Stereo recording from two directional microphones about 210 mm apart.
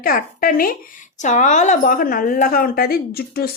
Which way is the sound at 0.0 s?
45° left (ahead or behind).